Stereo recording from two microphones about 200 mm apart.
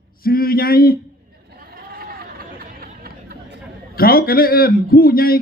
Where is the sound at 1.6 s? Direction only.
50° right (ahead or behind).